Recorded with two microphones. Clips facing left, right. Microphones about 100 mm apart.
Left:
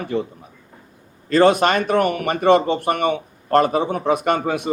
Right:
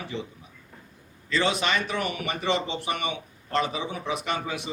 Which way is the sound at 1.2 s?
50° left (ahead or behind).